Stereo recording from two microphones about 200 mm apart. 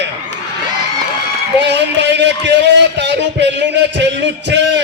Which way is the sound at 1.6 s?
60° right (ahead or behind).